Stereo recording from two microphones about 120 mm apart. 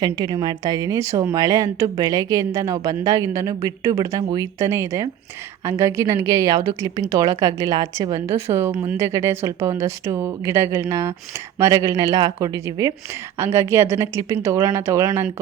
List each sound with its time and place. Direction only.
0.0 s a woman's voice: 35° right (ahead or behind)